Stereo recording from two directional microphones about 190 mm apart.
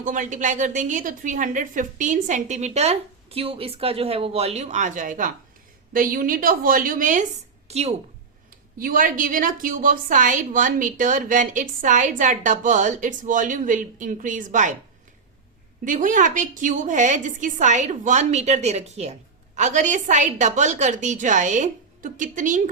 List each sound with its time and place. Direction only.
0.0 s a woman's voice: 45° right (ahead or behind)
8.8 s a woman's voice: 45° right (ahead or behind)
15.8 s a woman's voice: 45° right (ahead or behind)